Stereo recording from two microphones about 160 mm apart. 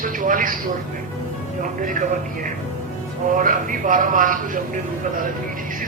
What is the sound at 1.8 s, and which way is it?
Speech, 55° right (ahead or behind).